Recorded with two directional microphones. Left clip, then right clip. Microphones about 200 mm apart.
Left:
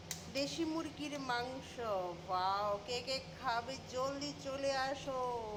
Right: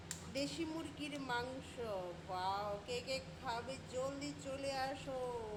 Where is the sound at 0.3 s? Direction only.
Centre (ahead or behind).